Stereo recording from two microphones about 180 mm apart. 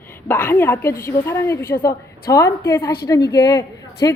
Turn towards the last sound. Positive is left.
turn(degrees=20)  # may be behind; listen again after turning